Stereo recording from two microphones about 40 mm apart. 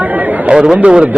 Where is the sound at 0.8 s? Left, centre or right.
Right.